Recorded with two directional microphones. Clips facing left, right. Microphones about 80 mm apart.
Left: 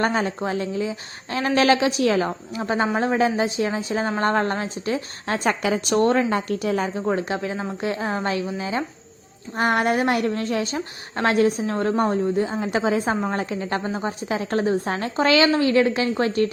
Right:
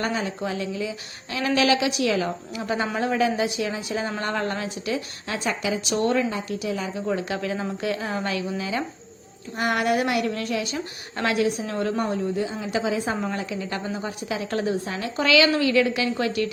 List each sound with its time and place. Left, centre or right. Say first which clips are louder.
0.0 s a woman's voice: left 4 dB; left
6.3 s a woman's voice: left 5 dB; left